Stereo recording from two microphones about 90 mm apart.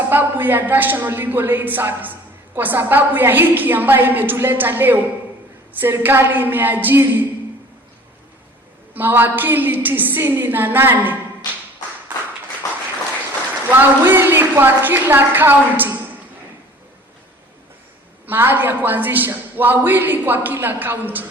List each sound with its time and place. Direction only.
0.1 s a woman's voice: 20° right (ahead or behind)
9.0 s a woman's voice: 20° right (ahead or behind)
13.7 s a woman's voice: 25° right (ahead or behind)
18.3 s a woman's voice: 25° right (ahead or behind)